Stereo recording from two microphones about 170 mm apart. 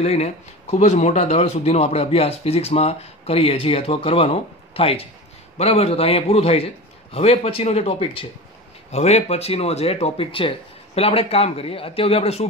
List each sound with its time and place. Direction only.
0.0 s speech: 40° left (ahead or behind)